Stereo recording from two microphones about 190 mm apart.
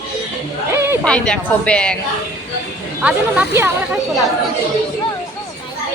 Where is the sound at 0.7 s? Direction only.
15° right (ahead or behind).